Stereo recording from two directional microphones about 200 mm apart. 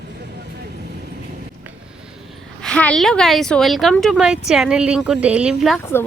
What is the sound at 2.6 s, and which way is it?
Speech, 5° left (ahead or behind).